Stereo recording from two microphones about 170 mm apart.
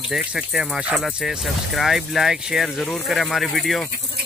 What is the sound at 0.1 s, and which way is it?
Speech, 5° right (ahead or behind).